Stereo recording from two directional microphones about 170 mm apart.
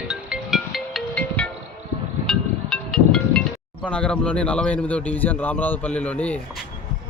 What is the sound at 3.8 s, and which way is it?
A man's voice, 5° left (ahead or behind).